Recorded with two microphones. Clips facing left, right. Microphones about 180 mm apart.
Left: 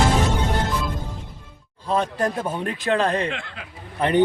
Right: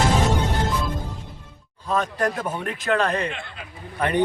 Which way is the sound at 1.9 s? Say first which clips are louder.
Left 1 dB; 30° left (ahead or behind).